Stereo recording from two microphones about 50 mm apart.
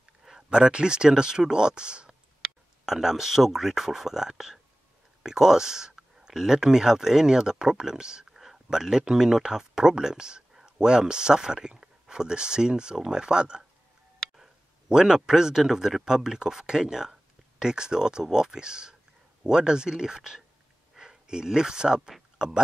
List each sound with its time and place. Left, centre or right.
0.2 s a sound: centre
0.5 s speech: centre
2.8 s speech: centre